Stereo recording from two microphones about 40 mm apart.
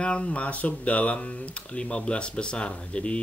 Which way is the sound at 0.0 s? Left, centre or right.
Left.